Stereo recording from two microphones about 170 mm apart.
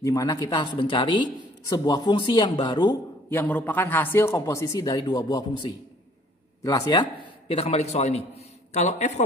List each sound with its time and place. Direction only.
0.0 s a man's voice: 20° left (ahead or behind)
3.3 s a man's voice: 10° left (ahead or behind); by 9.2 s 45° left (ahead or behind)